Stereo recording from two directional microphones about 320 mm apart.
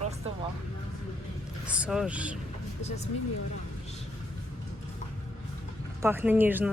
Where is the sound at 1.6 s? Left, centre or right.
Centre.